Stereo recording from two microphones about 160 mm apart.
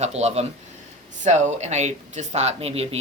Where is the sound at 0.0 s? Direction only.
40° right (ahead or behind).